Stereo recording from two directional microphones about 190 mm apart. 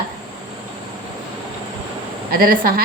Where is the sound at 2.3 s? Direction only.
50° right (ahead or behind).